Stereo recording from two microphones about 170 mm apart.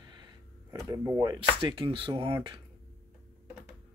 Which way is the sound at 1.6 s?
30° right (ahead or behind).